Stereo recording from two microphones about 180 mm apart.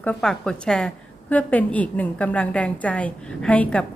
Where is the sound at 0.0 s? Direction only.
5° left (ahead or behind).